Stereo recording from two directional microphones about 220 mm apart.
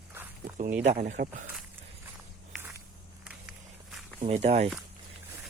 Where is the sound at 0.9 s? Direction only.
30° right (ahead or behind).